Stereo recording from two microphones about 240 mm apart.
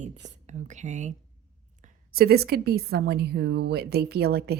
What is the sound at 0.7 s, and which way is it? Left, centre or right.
Speech, right.